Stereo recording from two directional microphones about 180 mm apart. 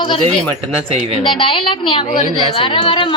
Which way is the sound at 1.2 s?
30° left (ahead or behind).